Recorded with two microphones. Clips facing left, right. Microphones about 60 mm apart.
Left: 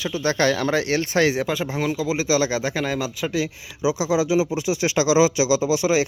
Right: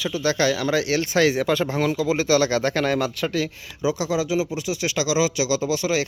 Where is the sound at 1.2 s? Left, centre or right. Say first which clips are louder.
Right 2 dB; centre.